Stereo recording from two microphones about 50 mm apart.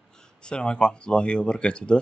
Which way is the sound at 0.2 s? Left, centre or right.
Centre.